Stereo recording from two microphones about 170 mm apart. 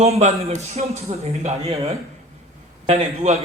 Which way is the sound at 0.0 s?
40° right (ahead or behind).